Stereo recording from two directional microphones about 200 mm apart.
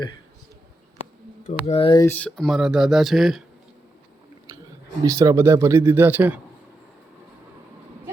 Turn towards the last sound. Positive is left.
turn(degrees=-10)  # may be behind; listen again after turning